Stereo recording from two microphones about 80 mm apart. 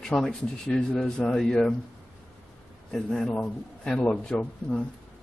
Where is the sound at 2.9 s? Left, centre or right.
Centre.